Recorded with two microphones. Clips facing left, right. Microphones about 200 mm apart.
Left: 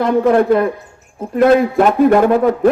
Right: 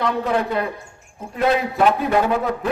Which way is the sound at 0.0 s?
50° left (ahead or behind).